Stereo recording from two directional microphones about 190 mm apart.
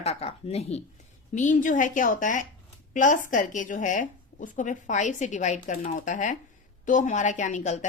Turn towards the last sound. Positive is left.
turn(degrees=40)  # may be behind; listen again after turning